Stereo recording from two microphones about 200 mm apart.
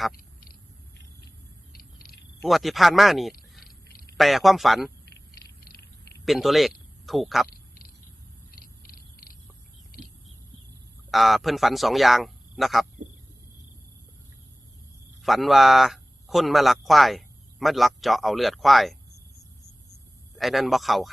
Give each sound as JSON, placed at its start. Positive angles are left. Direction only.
{"t": 0.1, "sound": "a sound", "side_deg": 45}
{"t": 1.7, "sound": "a sound", "side_deg": 50}
{"t": 2.4, "sound": "speech", "side_deg": 0}
{"t": 5.0, "sound": "cat", "side_deg": 50}
{"t": 6.2, "sound": "speech", "side_deg": 0}
{"t": 7.4, "sound": "a sound", "side_deg": 50}
{"t": 8.5, "sound": "purr", "side_deg": 50}
{"t": 11.1, "sound": "speech", "side_deg": 0}
{"t": 15.2, "sound": "speech", "side_deg": 0}
{"t": 20.3, "sound": "speech", "side_deg": 0}